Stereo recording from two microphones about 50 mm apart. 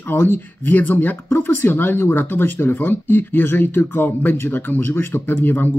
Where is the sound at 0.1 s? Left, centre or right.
Left.